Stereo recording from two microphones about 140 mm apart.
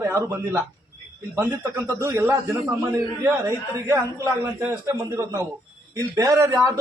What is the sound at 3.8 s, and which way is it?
A man's voice, 20° right (ahead or behind).